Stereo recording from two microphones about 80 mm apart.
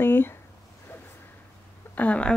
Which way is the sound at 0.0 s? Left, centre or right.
Left.